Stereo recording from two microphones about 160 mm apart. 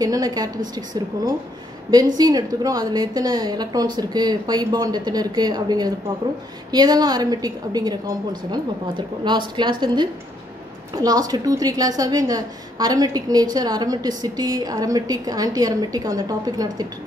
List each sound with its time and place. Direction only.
0.0 s a woman's voice: 25° right (ahead or behind)